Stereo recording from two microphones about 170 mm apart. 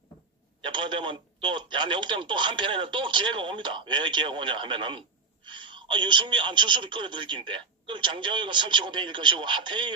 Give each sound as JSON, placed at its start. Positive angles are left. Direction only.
{"t": 0.6, "sound": "speech", "side_deg": -30}